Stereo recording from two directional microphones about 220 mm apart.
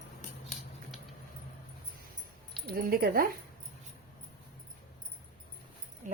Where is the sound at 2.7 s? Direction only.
45° right (ahead or behind).